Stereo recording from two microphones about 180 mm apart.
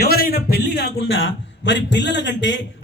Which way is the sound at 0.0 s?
55° left (ahead or behind).